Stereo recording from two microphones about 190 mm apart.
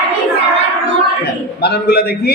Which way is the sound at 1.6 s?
55° left (ahead or behind).